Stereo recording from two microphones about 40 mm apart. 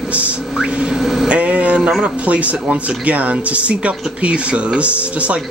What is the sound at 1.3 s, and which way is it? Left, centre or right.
Speech, right.